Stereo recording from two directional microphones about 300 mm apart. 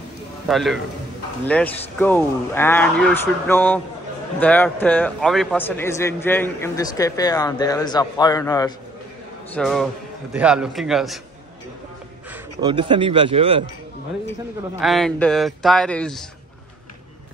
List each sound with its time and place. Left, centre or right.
0.5 s a man's voice: centre
9.5 s speech: centre
12.3 s a man's voice: centre
14.8 s speech: centre